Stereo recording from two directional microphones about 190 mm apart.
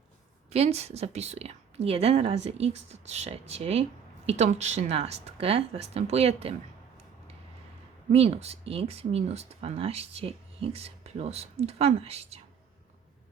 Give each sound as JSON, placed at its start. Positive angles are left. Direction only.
{"t": 0.5, "sound": "speech", "side_deg": -35}
{"t": 8.1, "sound": "speech", "side_deg": -35}